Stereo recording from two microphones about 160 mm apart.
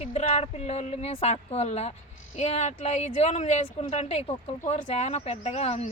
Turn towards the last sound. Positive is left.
turn(degrees=40)  # may be behind; listen again after turning